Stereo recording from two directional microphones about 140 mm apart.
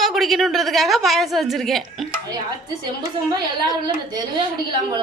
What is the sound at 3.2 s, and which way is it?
Speech, 30° right (ahead or behind).